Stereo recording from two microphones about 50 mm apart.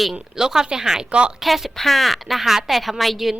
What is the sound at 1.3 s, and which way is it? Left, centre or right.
A woman's voice, centre.